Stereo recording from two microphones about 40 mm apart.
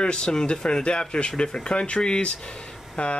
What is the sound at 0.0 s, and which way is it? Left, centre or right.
Speech, left.